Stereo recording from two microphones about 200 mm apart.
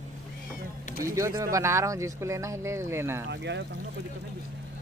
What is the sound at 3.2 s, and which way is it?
Speech, 60° right (ahead or behind).